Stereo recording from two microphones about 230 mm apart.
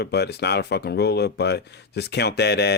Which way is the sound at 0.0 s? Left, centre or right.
Left.